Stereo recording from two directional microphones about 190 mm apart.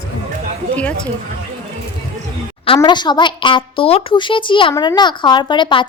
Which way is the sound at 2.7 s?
25° left (ahead or behind).